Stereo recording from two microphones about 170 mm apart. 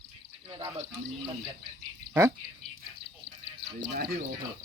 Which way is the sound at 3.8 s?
65° right (ahead or behind).